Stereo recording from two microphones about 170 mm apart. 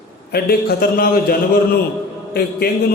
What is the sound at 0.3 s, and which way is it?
A man's voice, 65° left (ahead or behind).